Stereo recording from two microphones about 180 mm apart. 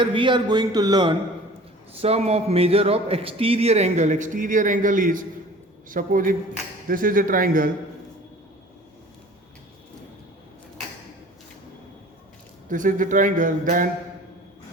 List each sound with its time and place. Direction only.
0.0 s a man's voice: 25° right (ahead or behind)
1.9 s a man's voice: 35° right (ahead or behind); by 7.7 s 50° right (ahead or behind)
12.6 s speech: 45° right (ahead or behind)